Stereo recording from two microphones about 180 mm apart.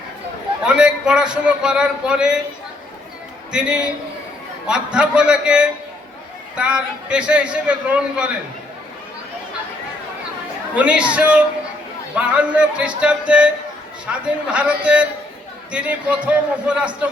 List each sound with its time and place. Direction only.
0.6 s a man's voice: 5° right (ahead or behind)
3.5 s a man's voice: 5° right (ahead or behind)
10.8 s a man's voice: 5° right (ahead or behind)